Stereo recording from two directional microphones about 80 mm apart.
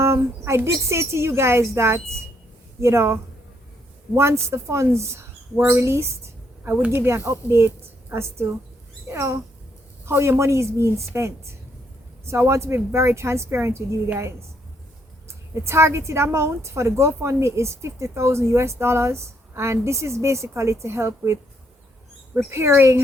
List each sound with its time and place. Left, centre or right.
0.0 s a woman's voice: right
15.3 s a woman's voice: right
22.4 s a woman's voice: right